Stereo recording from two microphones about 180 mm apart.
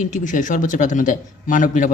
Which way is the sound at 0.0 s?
45° left (ahead or behind).